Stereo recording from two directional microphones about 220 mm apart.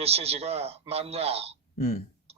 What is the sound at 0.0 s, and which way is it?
Speech, 30° right (ahead or behind).